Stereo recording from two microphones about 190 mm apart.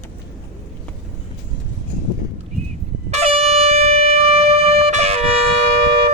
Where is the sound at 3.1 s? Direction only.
35° right (ahead or behind).